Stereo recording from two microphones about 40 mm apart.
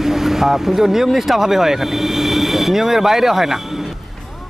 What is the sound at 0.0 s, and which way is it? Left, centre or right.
Speech, centre.